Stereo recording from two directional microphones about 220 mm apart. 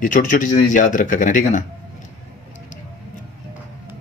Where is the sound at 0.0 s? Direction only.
35° left (ahead or behind).